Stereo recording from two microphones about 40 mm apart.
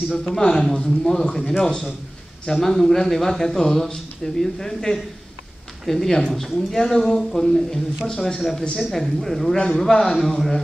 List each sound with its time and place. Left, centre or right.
0.1 s a man's voice: centre
2.4 s speech: centre